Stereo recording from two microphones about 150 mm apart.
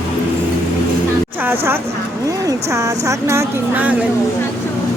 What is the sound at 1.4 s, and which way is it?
A woman's voice, 15° right (ahead or behind).